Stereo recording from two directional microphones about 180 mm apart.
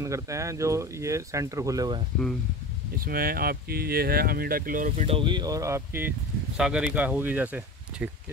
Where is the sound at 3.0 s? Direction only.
55° right (ahead or behind).